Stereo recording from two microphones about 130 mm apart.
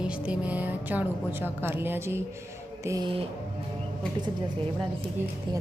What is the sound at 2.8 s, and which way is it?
Music, 25° right (ahead or behind).